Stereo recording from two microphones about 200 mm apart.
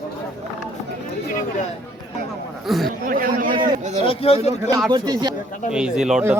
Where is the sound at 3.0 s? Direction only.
45° right (ahead or behind).